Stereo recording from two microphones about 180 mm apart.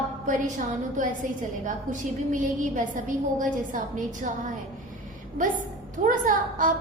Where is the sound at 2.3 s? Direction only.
45° right (ahead or behind).